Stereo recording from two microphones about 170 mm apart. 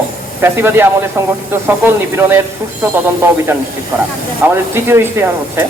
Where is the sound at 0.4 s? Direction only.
15° right (ahead or behind).